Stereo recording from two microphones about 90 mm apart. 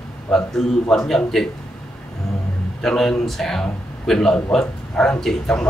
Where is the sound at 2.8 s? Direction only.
5° left (ahead or behind).